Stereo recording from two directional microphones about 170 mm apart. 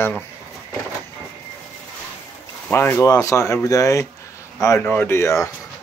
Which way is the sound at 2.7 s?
15° left (ahead or behind).